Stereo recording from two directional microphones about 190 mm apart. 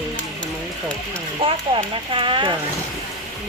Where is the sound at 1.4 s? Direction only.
30° right (ahead or behind).